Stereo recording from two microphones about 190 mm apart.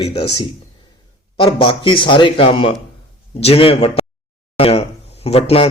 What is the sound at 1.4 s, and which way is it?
Speech, 25° left (ahead or behind).